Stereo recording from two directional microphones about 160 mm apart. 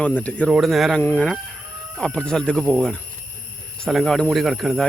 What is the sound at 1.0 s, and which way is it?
Chicken, 10° left (ahead or behind).